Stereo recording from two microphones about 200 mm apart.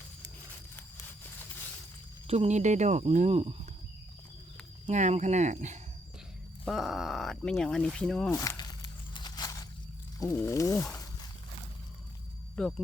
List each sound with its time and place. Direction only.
2.2 s speech: 30° right (ahead or behind)
4.9 s speech: 35° right (ahead or behind)
6.7 s speech: centre (ahead or behind)
8.3 s a sound: 15° left (ahead or behind)
10.2 s speech: 15° left (ahead or behind)
12.5 s speech: 5° left (ahead or behind)